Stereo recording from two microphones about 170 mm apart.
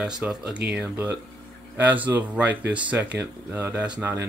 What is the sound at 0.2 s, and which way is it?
Speech, 10° right (ahead or behind).